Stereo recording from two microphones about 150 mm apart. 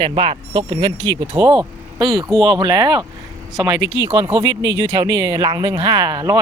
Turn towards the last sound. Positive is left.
turn(degrees=-25)  # may be behind; listen again after turning